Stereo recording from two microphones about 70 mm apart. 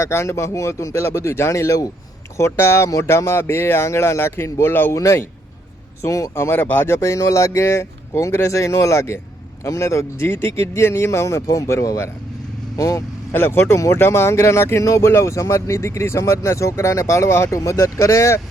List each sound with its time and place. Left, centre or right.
0.0 s speech: left
4.9 s speech: left
6.3 s speech: left
12.7 s speech: left
13.3 s speech: left
17.6 s speech: left